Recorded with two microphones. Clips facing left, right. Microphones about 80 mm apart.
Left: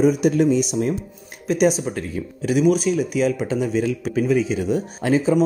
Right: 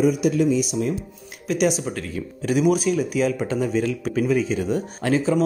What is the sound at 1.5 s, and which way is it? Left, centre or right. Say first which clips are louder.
Speech: left 3 dB; left.